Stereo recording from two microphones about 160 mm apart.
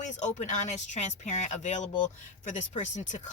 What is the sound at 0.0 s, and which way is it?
Speech, 50° left (ahead or behind).